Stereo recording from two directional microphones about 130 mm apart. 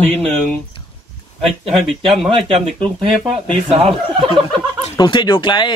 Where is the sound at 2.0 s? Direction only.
Centre (ahead or behind).